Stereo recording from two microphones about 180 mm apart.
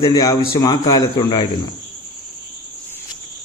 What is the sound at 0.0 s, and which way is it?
Speech, 20° left (ahead or behind).